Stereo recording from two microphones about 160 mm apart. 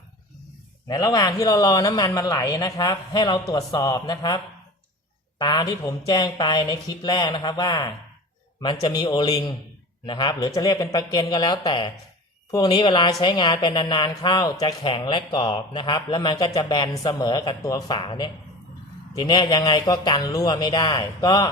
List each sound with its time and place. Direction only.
0.9 s speech: 25° left (ahead or behind)
5.4 s speech: 25° left (ahead or behind)